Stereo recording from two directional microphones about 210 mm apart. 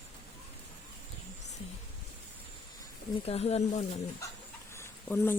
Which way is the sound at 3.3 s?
30° left (ahead or behind).